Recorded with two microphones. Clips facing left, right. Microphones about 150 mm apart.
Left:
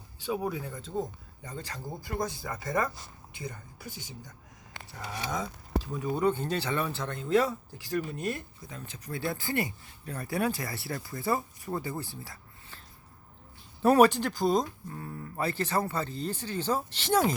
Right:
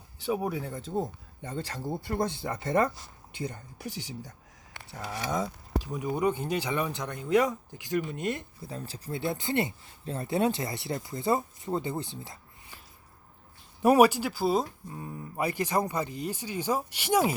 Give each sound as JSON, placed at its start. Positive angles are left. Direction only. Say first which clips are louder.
{"t": 0.3, "sound": "speech", "louder": "right 2 dB", "side_deg": -25}
{"t": 5.4, "sound": "speech", "louder": "right 1 dB", "side_deg": -15}
{"t": 13.8, "sound": "speech", "louder": "right 1 dB", "side_deg": -10}